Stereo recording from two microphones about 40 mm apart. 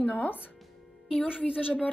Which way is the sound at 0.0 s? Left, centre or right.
Left.